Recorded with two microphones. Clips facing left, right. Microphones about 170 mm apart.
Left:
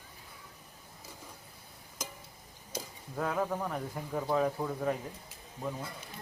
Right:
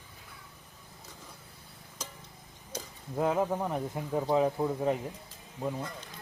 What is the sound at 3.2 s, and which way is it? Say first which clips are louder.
A man's voice: right 4 dB; 20° right (ahead or behind).